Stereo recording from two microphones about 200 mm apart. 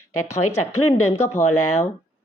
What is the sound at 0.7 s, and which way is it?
Speech, 90° left.